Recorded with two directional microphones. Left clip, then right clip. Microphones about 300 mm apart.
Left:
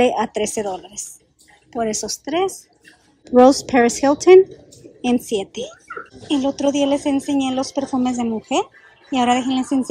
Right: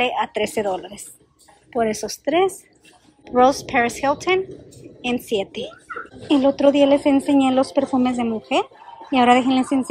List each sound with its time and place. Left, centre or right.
0.0 s a woman's voice: centre
3.3 s a woman's voice: left